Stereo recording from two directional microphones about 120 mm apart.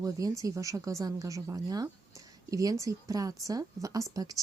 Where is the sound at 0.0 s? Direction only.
30° right (ahead or behind).